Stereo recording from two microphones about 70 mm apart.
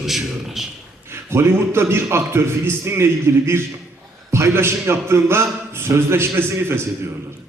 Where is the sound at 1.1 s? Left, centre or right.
Right.